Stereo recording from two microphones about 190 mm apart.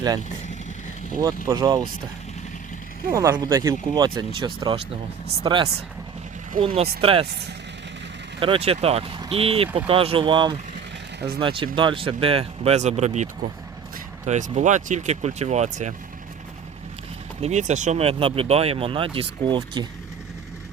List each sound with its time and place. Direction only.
1.5 s speech: 20° right (ahead or behind)
3.1 s speech: 15° right (ahead or behind)
8.4 s speech: 30° right (ahead or behind)
14.3 s speech: 40° right (ahead or behind)
17.4 s speech: 40° right (ahead or behind)